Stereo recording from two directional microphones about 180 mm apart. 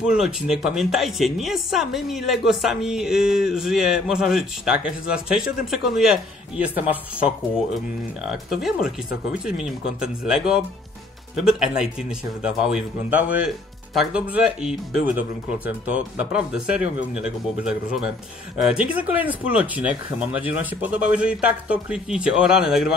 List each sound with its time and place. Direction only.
0.0 s speech: 5° right (ahead or behind)